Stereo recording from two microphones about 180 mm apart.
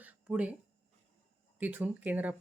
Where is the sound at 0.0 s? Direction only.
5° right (ahead or behind).